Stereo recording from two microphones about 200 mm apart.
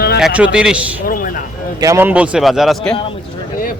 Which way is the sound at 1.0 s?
45° left (ahead or behind).